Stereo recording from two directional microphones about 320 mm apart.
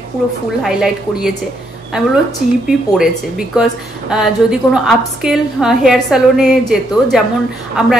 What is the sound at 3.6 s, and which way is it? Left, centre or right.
A woman's voice, centre.